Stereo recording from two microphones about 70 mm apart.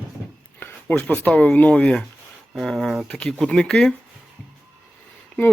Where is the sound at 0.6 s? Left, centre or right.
Left.